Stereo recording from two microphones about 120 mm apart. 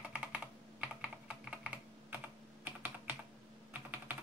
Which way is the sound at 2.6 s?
15° right (ahead or behind).